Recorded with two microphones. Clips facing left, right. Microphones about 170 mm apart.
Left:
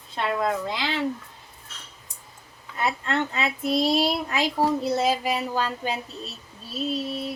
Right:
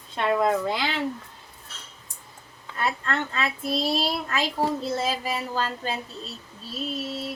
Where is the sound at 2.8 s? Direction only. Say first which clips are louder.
Left 2 dB; 15° left (ahead or behind).